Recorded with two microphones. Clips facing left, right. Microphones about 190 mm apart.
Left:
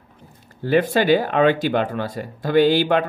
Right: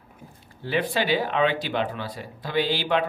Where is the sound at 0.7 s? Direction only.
45° left (ahead or behind).